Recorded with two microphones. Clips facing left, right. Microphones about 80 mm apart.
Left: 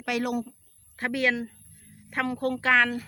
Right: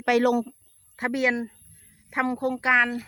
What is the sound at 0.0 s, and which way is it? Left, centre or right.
Speech, right.